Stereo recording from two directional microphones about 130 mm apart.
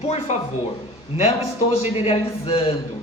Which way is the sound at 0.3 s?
60° left (ahead or behind).